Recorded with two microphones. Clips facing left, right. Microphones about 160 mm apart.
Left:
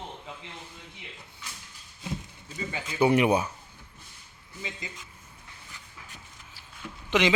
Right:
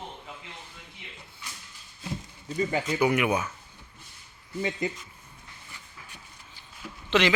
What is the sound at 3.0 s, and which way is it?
Speech, 30° left (ahead or behind).